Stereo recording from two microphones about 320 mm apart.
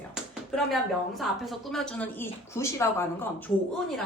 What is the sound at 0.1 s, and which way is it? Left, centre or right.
Tap, centre.